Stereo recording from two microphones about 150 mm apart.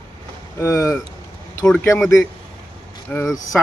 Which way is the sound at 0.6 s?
20° left (ahead or behind).